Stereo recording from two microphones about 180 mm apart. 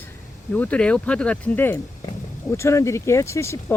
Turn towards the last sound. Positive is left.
turn(degrees=15)  # may be behind; listen again after turning